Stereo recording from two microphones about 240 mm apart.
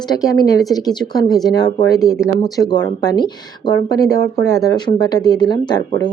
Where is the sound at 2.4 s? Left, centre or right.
Centre.